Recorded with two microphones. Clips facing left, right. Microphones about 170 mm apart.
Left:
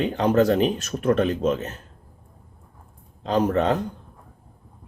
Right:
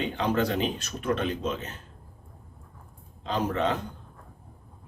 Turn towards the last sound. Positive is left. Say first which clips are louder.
# left 6 dB
turn(degrees=45)  # may be behind; listen again after turning